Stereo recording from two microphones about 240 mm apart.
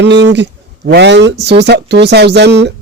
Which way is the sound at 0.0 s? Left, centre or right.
Right.